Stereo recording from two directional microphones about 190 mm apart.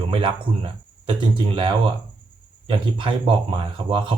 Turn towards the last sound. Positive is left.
turn(degrees=-30)  # may be behind; listen again after turning